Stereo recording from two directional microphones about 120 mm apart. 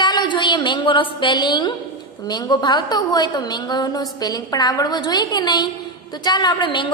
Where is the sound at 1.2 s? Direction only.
40° left (ahead or behind).